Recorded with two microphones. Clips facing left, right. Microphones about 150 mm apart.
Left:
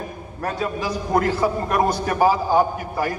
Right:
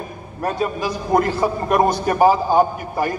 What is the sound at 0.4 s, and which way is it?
A man's voice, 15° right (ahead or behind).